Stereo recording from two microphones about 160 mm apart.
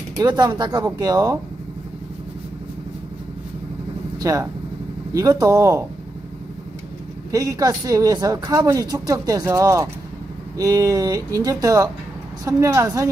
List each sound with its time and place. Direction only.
0.2 s speech: 25° right (ahead or behind)
4.2 s speech: 20° right (ahead or behind)
7.2 s speech: 20° right (ahead or behind)